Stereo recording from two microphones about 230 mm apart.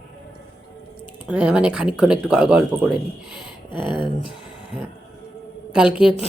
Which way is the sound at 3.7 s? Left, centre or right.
Left.